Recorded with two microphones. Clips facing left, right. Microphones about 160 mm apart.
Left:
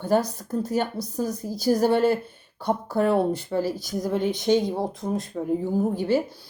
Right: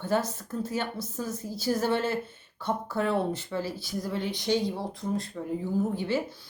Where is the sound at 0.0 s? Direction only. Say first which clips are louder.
Left 5 dB; 40° left (ahead or behind).